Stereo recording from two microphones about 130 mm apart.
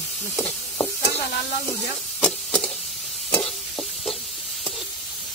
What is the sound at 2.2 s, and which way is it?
Stir, 5° left (ahead or behind).